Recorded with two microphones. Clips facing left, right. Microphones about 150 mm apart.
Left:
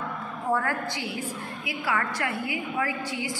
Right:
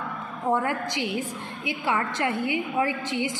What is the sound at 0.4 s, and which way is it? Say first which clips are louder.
A woman's voice: right 2 dB; 20° right (ahead or behind).